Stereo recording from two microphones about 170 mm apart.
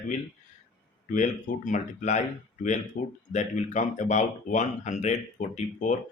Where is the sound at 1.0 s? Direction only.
50° left (ahead or behind).